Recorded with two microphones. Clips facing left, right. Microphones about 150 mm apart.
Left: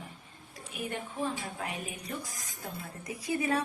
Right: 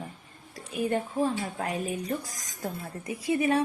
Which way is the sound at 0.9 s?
40° right (ahead or behind).